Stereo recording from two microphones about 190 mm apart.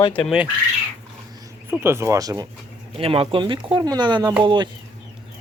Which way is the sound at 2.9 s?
30° right (ahead or behind).